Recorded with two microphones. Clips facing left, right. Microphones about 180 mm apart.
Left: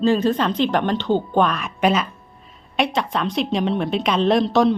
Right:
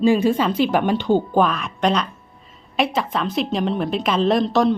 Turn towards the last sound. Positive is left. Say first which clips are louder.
# left 1 dB
turn(degrees=0)  # may be behind; listen again after turning